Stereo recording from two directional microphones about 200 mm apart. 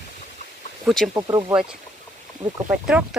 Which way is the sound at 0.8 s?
Centre (ahead or behind).